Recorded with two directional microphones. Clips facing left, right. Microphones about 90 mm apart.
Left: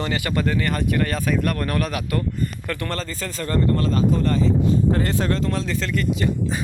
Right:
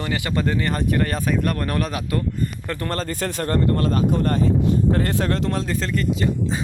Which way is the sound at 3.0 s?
55° right (ahead or behind).